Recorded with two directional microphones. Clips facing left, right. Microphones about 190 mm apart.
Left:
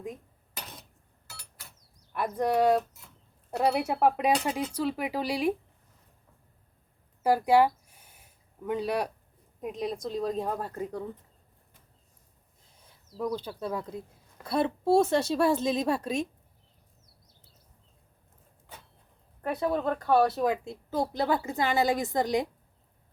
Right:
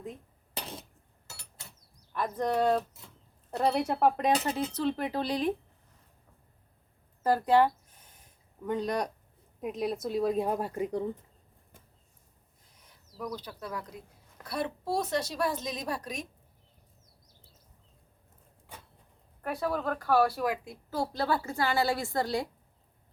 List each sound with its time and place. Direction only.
1.3 s a sound: 25° right (ahead or behind)
2.1 s speech: 10° left (ahead or behind)
7.2 s a sound: 10° left (ahead or behind)
9.6 s speech: centre (ahead or behind)
12.9 s speech: 25° left (ahead or behind)
19.4 s speech: 25° left (ahead or behind)